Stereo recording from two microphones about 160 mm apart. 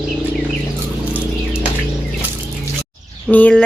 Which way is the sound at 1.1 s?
10° right (ahead or behind).